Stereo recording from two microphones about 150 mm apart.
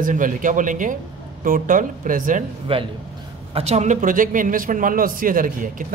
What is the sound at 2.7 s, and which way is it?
A man's voice, 35° right (ahead or behind).